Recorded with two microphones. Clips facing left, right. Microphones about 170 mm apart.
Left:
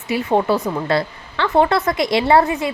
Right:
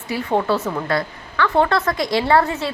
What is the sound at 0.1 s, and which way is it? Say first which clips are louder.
A woman's voice: left 3 dB; 20° left (ahead or behind).